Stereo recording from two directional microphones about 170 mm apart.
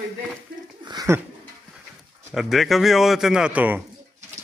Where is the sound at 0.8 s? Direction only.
25° right (ahead or behind).